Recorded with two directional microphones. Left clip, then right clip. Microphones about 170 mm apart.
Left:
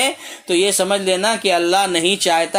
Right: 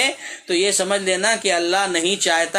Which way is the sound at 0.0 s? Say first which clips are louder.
Left 1 dB; 35° left (ahead or behind).